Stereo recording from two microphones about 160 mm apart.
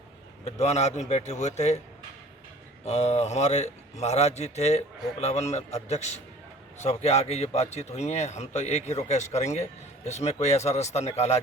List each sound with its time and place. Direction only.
0.4 s a man's voice: 45° left (ahead or behind)
2.8 s a man's voice: 45° left (ahead or behind)